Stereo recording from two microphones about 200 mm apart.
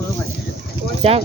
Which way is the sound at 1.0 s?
30° right (ahead or behind).